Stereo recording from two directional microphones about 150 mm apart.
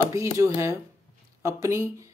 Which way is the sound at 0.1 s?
20° right (ahead or behind).